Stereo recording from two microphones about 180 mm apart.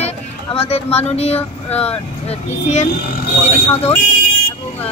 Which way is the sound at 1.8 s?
35° left (ahead or behind).